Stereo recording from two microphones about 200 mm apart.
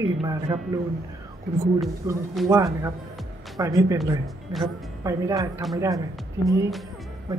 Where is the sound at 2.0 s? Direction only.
15° right (ahead or behind).